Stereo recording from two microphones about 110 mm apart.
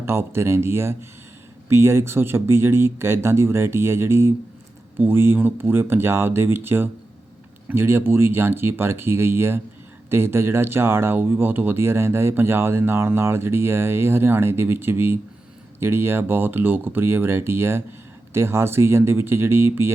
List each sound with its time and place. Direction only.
0.0 s speech: 25° right (ahead or behind)